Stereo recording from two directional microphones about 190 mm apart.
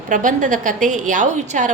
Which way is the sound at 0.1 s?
45° right (ahead or behind).